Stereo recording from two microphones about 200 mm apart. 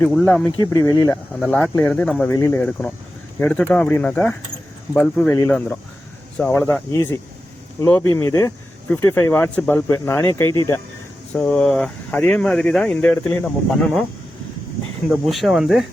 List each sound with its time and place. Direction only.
0.2 s speech: 10° left (ahead or behind)
1.4 s speech: 5° left (ahead or behind)
11.3 s speech: 5° left (ahead or behind)
15.1 s speech: centre (ahead or behind)